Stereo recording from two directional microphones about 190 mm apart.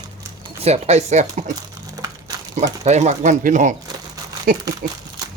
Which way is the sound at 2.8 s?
35° right (ahead or behind).